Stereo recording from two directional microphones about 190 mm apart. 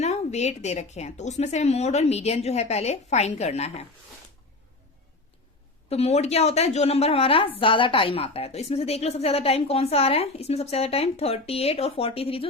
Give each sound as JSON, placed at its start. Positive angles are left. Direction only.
{"t": 0.0, "sound": "a woman's voice", "side_deg": 35}
{"t": 5.9, "sound": "a woman's voice", "side_deg": 35}